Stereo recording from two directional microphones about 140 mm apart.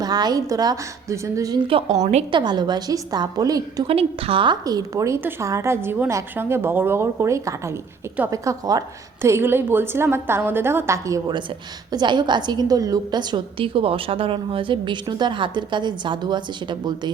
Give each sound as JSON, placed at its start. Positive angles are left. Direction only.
{"t": 0.0, "sound": "a woman's voice", "side_deg": -30}
{"t": 3.8, "sound": "a woman's voice", "side_deg": -45}
{"t": 4.6, "sound": "a woman's voice", "side_deg": -25}